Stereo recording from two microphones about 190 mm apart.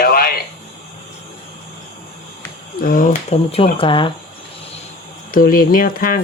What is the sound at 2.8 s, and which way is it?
Speech, 45° left (ahead or behind).